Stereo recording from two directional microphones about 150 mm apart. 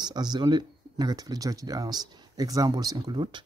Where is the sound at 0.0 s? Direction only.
30° right (ahead or behind).